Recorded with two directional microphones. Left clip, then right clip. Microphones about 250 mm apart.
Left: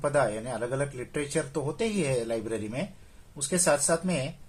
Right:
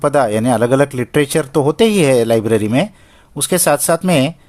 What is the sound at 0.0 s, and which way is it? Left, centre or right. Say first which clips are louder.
Speech: right 13 dB; right.